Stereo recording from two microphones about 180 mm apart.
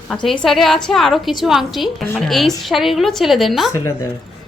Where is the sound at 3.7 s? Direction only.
15° left (ahead or behind).